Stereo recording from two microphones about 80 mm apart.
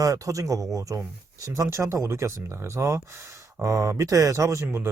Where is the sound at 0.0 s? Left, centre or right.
Right.